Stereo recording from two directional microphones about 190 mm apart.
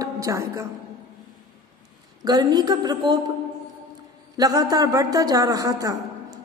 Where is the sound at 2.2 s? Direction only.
20° right (ahead or behind).